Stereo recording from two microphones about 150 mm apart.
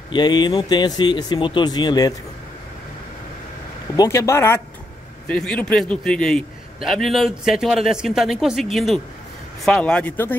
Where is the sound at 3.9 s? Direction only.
25° left (ahead or behind).